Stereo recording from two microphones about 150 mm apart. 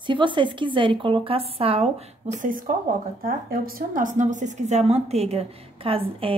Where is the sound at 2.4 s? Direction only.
65° right (ahead or behind).